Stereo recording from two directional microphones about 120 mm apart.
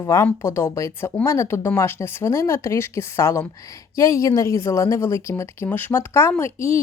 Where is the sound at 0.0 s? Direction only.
20° left (ahead or behind).